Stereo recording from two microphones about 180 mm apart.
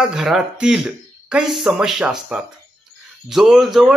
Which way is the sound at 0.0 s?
Centre (ahead or behind).